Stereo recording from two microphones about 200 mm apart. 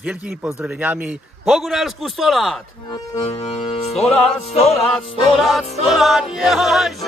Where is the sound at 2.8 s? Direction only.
25° left (ahead or behind).